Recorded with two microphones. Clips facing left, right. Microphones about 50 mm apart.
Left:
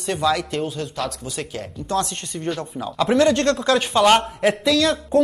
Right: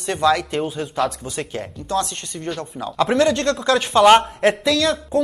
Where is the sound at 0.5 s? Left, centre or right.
Centre.